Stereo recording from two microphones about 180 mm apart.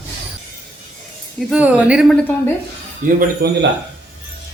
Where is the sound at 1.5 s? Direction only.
10° right (ahead or behind).